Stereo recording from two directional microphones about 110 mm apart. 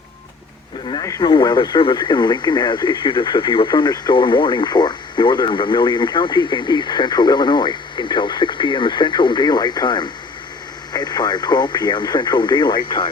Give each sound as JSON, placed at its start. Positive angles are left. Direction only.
{"t": 1.0, "sound": "speech", "side_deg": 30}
{"t": 1.3, "sound": "speech", "side_deg": 40}